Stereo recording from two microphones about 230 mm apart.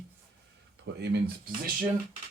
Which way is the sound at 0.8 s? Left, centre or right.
Right.